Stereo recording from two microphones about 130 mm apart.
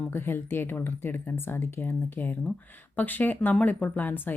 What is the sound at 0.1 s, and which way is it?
Speech, 15° left (ahead or behind).